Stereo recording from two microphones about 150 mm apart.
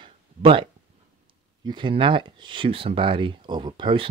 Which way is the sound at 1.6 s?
30° right (ahead or behind).